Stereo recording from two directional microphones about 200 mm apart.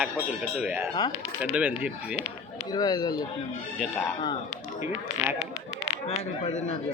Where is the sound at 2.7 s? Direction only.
20° left (ahead or behind).